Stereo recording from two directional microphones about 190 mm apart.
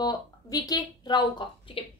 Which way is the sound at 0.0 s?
20° left (ahead or behind).